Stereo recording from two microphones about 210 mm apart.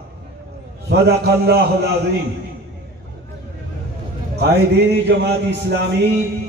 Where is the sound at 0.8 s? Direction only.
50° right (ahead or behind).